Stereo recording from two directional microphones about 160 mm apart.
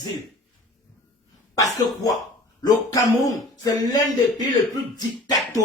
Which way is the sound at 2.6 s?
25° left (ahead or behind).